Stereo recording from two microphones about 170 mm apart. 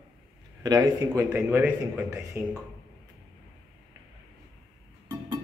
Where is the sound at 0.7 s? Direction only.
20° right (ahead or behind).